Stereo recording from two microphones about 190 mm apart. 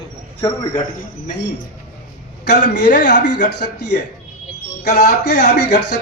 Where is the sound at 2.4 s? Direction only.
60° left (ahead or behind).